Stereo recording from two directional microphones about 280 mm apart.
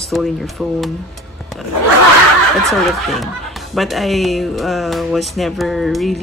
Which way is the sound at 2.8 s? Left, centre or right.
Centre.